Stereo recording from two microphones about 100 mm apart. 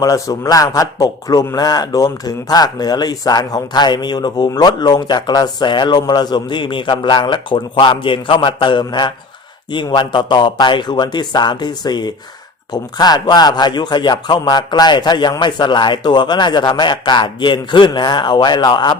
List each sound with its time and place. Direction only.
0.0 s a man's voice: 40° left (ahead or behind)